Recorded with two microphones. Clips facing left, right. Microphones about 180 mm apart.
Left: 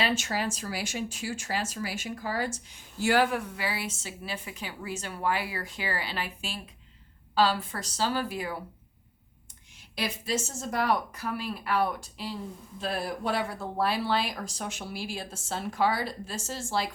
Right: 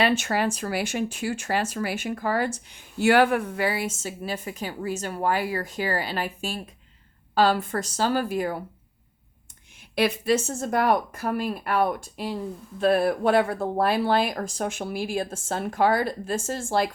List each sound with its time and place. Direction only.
0.0 s speech: 60° right (ahead or behind)
9.9 s speech: 60° right (ahead or behind)